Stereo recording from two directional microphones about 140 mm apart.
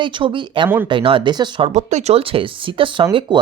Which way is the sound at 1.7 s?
55° right (ahead or behind).